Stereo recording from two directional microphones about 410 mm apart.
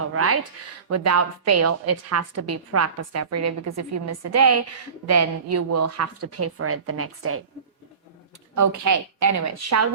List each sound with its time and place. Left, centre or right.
0.0 s a woman's voice: right
8.5 s a woman's voice: right